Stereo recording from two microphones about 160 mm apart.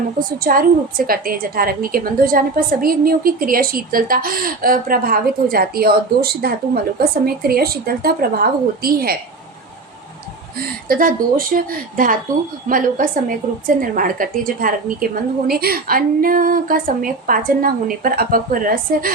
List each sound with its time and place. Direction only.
0.3 s a woman's voice: 60° right (ahead or behind)
10.6 s a woman's voice: 70° right (ahead or behind)
15.5 s a woman's voice: 70° right (ahead or behind)